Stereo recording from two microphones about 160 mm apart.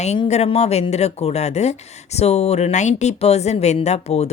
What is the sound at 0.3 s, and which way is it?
Speech, 40° left (ahead or behind).